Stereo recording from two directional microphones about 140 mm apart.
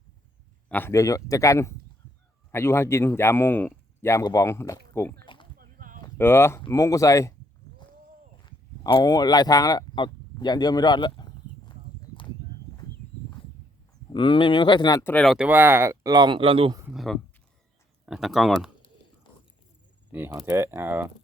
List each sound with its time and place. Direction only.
0.7 s speech: 15° left (ahead or behind)
5.2 s a sound: 35° left (ahead or behind)
5.5 s a sound: 80° right
6.1 s speech: 15° left (ahead or behind)
8.4 s speech: 35° left (ahead or behind)
14.1 s speech: 35° left (ahead or behind)
15.0 s speech: 5° left (ahead or behind)
15.4 s speech: 15° right (ahead or behind); by 16.7 s 40° right (ahead or behind)
16.9 s speech: centre (ahead or behind)
20.1 s speech: 15° right (ahead or behind)